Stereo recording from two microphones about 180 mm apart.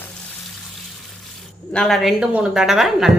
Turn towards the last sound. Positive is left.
turn(degrees=0)  # may be behind; listen again after turning